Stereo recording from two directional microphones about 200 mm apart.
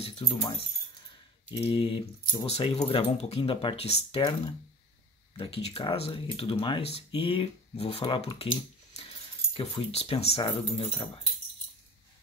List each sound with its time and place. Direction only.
0.0 s speech: 25° left (ahead or behind)